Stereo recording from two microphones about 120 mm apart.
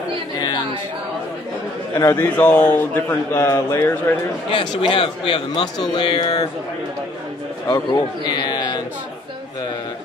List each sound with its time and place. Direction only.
2.0 s a man's voice: 25° left (ahead or behind)
2.3 s speech: 15° left (ahead or behind)
4.5 s speech: 45° left (ahead or behind)
7.6 s a man's voice: 35° left (ahead or behind)